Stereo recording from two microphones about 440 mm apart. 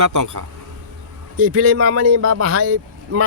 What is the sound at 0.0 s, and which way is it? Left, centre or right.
Speech, right.